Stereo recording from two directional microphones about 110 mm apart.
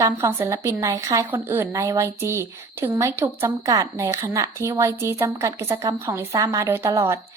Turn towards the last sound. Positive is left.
turn(degrees=-25)  # may be behind; listen again after turning